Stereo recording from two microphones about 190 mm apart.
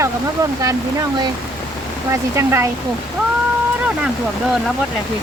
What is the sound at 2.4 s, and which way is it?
Speech, 15° right (ahead or behind).